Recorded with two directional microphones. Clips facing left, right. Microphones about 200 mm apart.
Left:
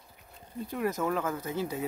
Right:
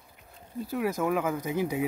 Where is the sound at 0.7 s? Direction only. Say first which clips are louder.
Right 2 dB; 5° right (ahead or behind).